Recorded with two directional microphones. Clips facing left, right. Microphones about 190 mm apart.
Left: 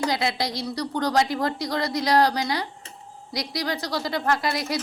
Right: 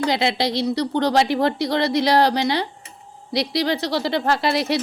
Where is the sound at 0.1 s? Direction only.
25° right (ahead or behind).